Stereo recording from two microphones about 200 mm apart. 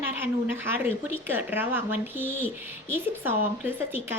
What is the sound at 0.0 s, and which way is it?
A woman's voice, 10° right (ahead or behind).